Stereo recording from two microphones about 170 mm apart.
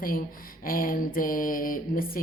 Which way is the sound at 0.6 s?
55° left (ahead or behind).